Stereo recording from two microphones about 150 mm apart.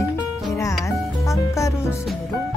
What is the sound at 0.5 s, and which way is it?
Speech, 20° left (ahead or behind).